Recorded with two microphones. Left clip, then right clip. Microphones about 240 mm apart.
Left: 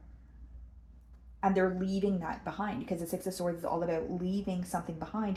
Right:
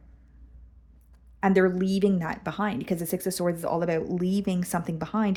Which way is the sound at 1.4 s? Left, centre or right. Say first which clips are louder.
Right 7 dB; right.